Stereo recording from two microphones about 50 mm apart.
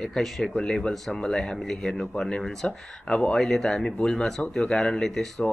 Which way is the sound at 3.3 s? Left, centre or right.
Centre.